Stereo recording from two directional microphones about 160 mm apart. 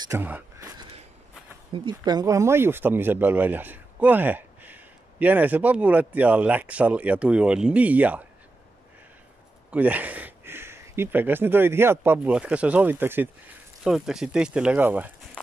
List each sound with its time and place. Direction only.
0.1 s speech: 15° right (ahead or behind)
1.7 s speech: 25° right (ahead or behind); by 8.3 s 10° right (ahead or behind)
9.7 s speech: 10° right (ahead or behind)